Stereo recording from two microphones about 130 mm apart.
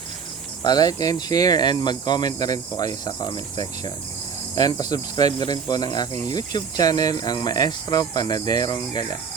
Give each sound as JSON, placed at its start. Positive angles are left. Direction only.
{"t": 0.6, "sound": "speech", "side_deg": 30}